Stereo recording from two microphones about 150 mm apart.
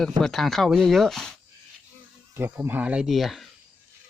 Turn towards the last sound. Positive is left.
turn(degrees=0)  # may be behind; listen again after turning